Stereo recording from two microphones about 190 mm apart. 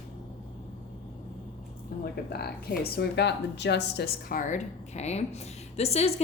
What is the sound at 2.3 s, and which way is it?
A woman's voice, 55° left (ahead or behind).